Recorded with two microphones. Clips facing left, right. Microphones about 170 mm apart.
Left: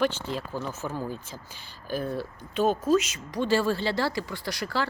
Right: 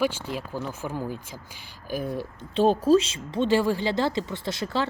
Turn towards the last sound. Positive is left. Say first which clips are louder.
# right 2 dB
turn(degrees=-20)  # may be behind; listen again after turning